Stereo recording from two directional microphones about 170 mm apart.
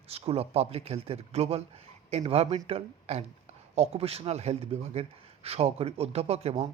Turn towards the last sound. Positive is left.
turn(degrees=-40)  # may be behind; listen again after turning